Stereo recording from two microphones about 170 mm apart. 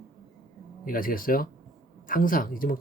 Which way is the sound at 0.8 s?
55° left (ahead or behind).